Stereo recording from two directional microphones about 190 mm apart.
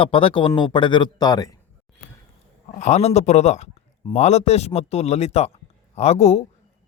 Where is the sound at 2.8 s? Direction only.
35° left (ahead or behind).